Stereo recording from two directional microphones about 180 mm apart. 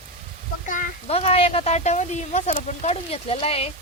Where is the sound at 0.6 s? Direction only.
45° left (ahead or behind).